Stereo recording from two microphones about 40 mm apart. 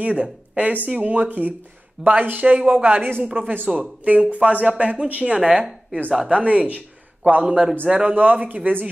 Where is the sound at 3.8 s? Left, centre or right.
Right.